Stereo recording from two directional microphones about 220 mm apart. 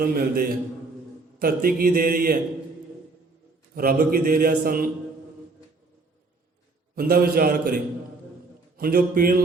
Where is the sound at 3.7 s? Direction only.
40° right (ahead or behind).